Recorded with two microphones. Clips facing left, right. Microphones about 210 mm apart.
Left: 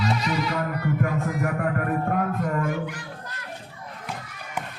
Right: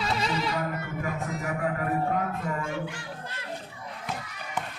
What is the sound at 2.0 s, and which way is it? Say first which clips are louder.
Music: left 4 dB; 55° left (ahead or behind).